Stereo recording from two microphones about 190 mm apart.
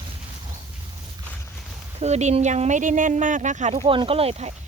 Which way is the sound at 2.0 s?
35° right (ahead or behind).